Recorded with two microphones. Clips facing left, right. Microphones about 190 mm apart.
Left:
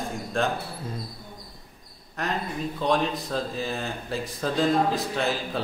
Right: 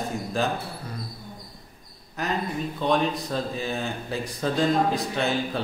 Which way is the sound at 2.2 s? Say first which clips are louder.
Right 1 dB; centre (ahead or behind).